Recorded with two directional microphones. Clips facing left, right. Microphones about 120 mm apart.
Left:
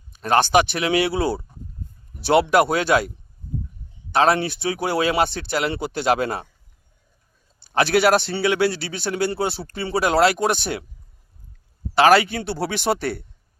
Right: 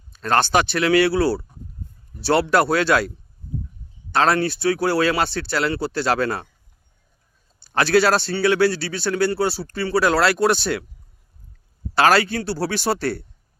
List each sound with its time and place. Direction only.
0.1 s a sound: 15° left (ahead or behind)
0.5 s speech: 15° left (ahead or behind)
4.1 s speech: 20° left (ahead or behind)
7.6 s a man's voice: 15° left (ahead or behind)
11.9 s speech: 15° left (ahead or behind)